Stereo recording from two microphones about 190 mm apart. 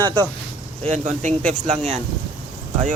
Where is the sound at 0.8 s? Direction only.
40° right (ahead or behind).